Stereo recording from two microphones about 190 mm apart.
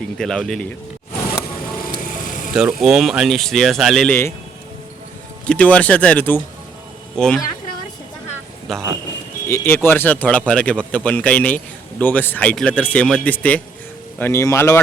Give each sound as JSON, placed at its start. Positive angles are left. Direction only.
{"t": 0.2, "sound": "speech", "side_deg": 0}
{"t": 2.5, "sound": "speech", "side_deg": 0}
{"t": 5.5, "sound": "speech", "side_deg": 5}
{"t": 8.7, "sound": "a man's voice", "side_deg": 0}